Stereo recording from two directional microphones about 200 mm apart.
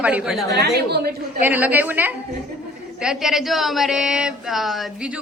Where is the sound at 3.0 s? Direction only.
Centre (ahead or behind).